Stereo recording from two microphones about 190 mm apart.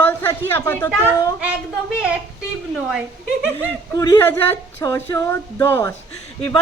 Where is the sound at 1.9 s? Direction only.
5° right (ahead or behind).